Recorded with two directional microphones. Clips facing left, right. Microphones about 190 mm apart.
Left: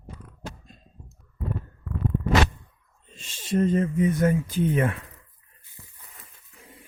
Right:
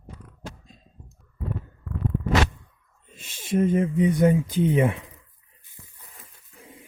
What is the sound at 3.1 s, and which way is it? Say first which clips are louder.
Speech: right 1 dB; 10° right (ahead or behind).